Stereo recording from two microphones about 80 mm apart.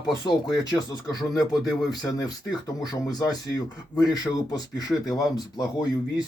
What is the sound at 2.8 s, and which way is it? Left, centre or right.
Speech, left.